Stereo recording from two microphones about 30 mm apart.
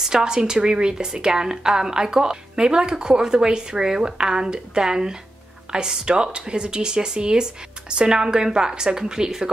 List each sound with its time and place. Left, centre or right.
0.0 s a woman's voice: right